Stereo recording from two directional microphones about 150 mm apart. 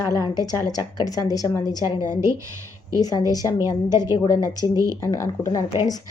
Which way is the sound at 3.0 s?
25° left (ahead or behind).